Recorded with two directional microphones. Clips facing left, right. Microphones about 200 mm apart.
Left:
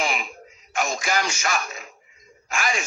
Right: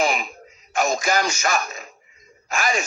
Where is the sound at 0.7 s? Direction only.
40° right (ahead or behind).